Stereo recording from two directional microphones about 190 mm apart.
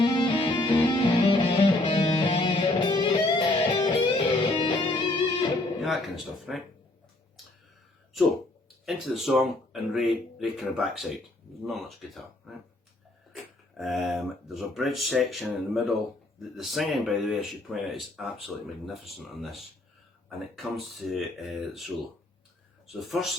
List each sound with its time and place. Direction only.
0.0 s music: 25° left (ahead or behind)
5.8 s speech: centre (ahead or behind)
8.9 s speech: centre (ahead or behind)
13.7 s speech: centre (ahead or behind)